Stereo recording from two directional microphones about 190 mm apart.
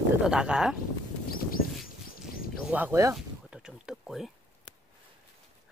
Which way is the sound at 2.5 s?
5° right (ahead or behind).